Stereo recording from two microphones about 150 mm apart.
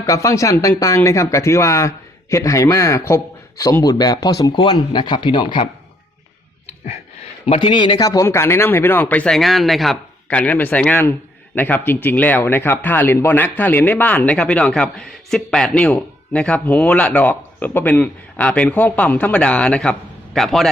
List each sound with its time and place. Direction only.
0.0 s speech: 20° left (ahead or behind)
6.7 s a man's voice: 45° left (ahead or behind); by 20.7 s centre (ahead or behind)